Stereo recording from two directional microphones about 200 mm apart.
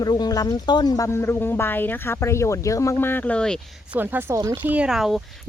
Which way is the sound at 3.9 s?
10° right (ahead or behind).